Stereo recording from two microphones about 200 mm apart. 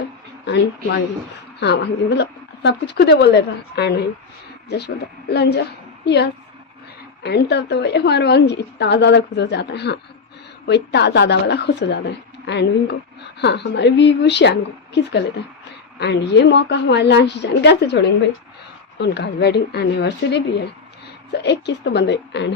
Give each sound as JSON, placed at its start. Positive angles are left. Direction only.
{"t": 0.4, "sound": "a woman's voice", "side_deg": 55}
{"t": 5.3, "sound": "a woman's voice", "side_deg": 55}